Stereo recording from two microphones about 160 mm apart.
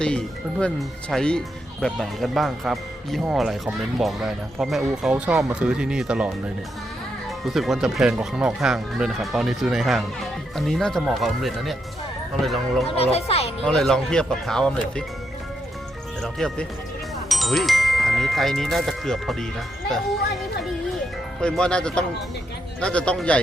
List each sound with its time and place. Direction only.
0.0 s speech: 5° left (ahead or behind)
13.0 s a child's voice: 40° left (ahead or behind)
13.7 s speech: 5° left (ahead or behind)
16.2 s speech: 5° left (ahead or behind)
21.4 s speech: 5° left (ahead or behind)